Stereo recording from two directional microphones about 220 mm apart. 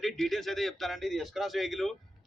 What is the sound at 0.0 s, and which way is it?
A man's voice, centre (ahead or behind).